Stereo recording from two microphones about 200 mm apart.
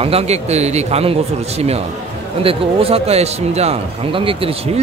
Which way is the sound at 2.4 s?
30° right (ahead or behind).